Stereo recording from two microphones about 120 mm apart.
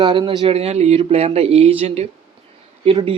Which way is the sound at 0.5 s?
60° right (ahead or behind).